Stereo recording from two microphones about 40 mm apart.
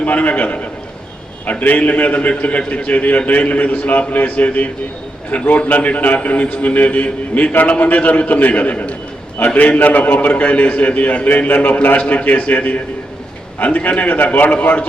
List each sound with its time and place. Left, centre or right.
0.0 s a man's voice: left